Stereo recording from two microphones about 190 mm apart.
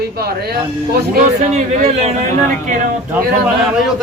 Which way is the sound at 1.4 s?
40° right (ahead or behind).